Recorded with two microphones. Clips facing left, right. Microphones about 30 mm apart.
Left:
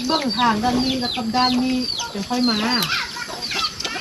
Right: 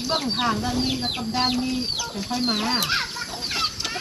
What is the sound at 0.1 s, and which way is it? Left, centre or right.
Speech, centre.